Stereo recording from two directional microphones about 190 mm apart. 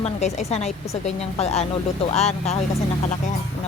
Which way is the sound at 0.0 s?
35° left (ahead or behind).